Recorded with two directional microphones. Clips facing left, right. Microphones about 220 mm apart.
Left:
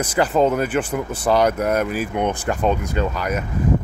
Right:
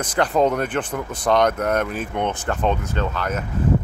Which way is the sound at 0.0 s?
5° left (ahead or behind).